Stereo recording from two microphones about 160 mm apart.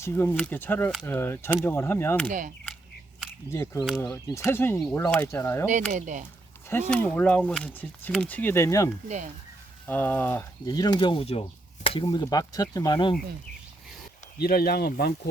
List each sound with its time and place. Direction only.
0.0 s speech: 15° left (ahead or behind)
3.5 s speech: 15° left (ahead or behind)
3.8 s speech: centre (ahead or behind)
4.3 s speech: 15° left (ahead or behind)
5.9 s speech: 50° right (ahead or behind)
6.7 s speech: 10° left (ahead or behind)
9.0 s speech: 50° right (ahead or behind)
9.8 s speech: 10° left (ahead or behind)
10.7 s speech: 25° left (ahead or behind)
14.3 s speech: 75° left (ahead or behind)